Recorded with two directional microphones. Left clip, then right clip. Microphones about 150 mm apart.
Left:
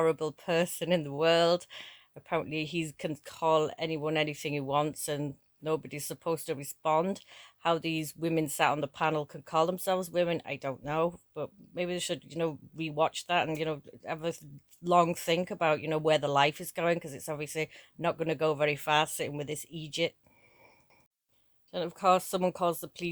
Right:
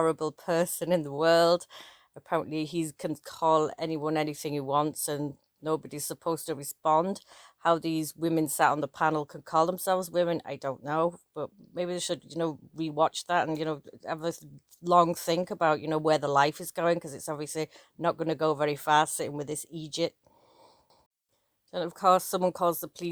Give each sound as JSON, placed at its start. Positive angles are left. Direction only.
{"t": 0.0, "sound": "speech", "side_deg": -30}
{"t": 21.7, "sound": "speech", "side_deg": -30}